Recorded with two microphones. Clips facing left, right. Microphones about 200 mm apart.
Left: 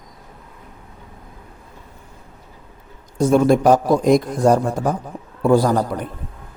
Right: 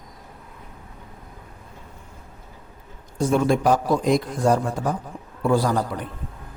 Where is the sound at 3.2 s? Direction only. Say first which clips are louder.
Left 5 dB; 40° left (ahead or behind).